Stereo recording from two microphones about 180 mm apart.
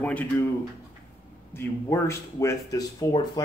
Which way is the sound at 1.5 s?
15° left (ahead or behind).